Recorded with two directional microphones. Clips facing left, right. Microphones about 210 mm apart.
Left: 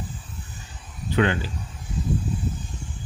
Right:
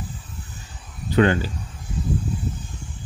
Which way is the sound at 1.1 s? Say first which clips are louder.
Right 4 dB; 40° right (ahead or behind).